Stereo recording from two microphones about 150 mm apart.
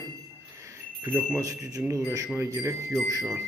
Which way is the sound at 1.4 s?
20° right (ahead or behind).